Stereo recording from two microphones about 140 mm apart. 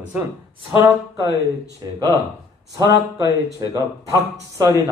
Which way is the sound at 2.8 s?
25° right (ahead or behind).